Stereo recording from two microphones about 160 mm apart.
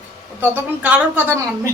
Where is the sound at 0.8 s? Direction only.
10° right (ahead or behind).